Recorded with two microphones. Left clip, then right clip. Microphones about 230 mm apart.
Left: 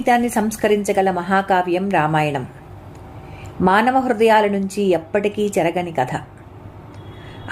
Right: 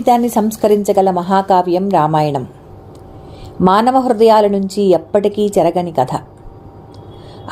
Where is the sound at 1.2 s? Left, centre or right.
Centre.